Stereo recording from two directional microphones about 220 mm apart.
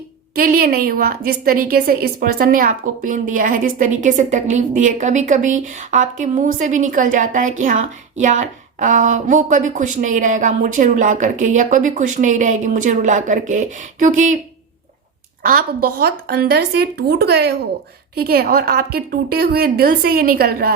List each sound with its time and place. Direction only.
0.3 s a woman's voice: 40° right (ahead or behind)
15.4 s a woman's voice: 40° right (ahead or behind)